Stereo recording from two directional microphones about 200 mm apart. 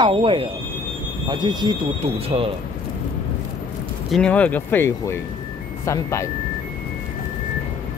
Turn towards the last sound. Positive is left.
turn(degrees=15)  # may be behind; listen again after turning